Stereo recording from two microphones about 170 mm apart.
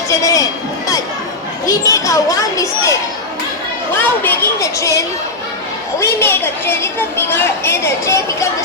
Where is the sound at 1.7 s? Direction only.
20° left (ahead or behind).